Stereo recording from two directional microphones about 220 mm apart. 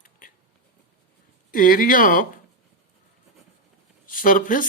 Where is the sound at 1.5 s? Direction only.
40° left (ahead or behind).